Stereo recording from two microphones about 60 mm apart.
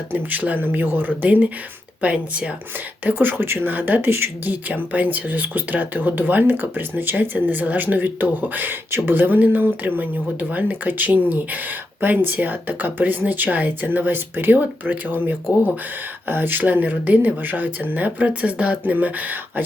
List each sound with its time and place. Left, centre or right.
0.1 s speech: right
3.0 s speech: right